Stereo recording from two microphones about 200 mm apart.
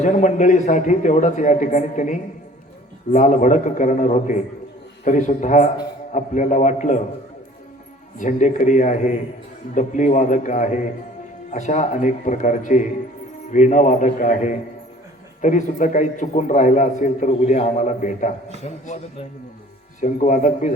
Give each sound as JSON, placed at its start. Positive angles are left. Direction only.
{"t": 0.0, "sound": "a man's voice", "side_deg": 40}
{"t": 8.2, "sound": "a man's voice", "side_deg": 40}
{"t": 20.0, "sound": "a man's voice", "side_deg": 40}